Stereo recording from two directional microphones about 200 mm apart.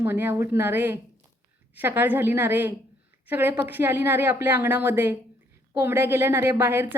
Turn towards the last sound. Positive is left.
turn(degrees=-10)  # may be behind; listen again after turning